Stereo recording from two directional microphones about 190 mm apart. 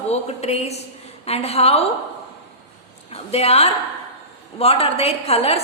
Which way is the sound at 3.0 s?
35° left (ahead or behind).